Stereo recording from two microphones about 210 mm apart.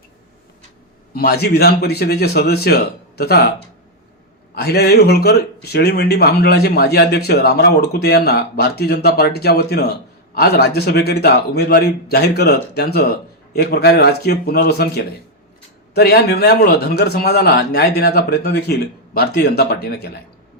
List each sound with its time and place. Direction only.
1.1 s a man's voice: 50° left (ahead or behind)
4.5 s a man's voice: 50° left (ahead or behind)